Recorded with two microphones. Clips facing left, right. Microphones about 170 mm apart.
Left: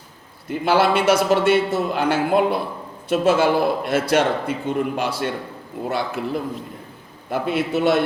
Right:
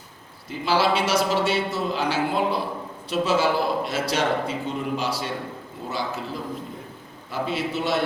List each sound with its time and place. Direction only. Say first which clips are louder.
0.4 s a man's voice: left 4 dB; 55° left (ahead or behind)